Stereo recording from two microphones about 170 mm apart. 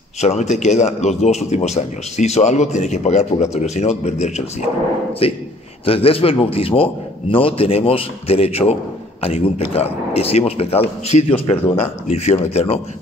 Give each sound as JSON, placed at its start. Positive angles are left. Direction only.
{"t": 0.2, "sound": "speech", "side_deg": 40}